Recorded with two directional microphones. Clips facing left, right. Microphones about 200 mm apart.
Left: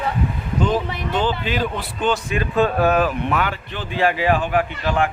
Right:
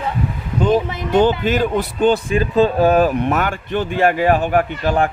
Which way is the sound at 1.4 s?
45° right (ahead or behind).